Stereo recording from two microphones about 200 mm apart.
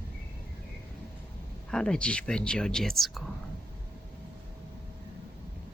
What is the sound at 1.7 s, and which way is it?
Speech, 5° left (ahead or behind).